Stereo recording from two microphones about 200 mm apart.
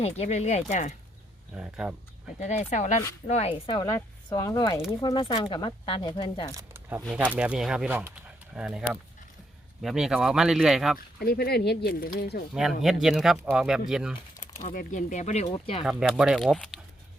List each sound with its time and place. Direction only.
0.0 s speech: 35° left (ahead or behind)
1.5 s speech: 5° right (ahead or behind)
2.4 s speech: 35° left (ahead or behind)
3.5 s speech: 20° left (ahead or behind)
6.5 s speech: 15° right (ahead or behind)
10.9 s speech: 50° left (ahead or behind)
12.5 s speech: centre (ahead or behind)
14.6 s speech: 40° left (ahead or behind)
15.4 s speech: 25° left (ahead or behind)
15.8 s speech: 5° right (ahead or behind)